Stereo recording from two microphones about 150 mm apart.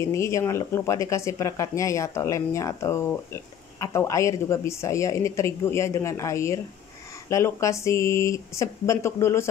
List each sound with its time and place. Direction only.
0.0 s speech: 20° left (ahead or behind)